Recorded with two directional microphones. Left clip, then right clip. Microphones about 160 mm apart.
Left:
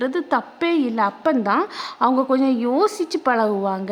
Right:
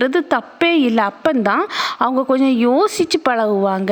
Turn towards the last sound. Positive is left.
turn(degrees=-30)  # may be behind; listen again after turning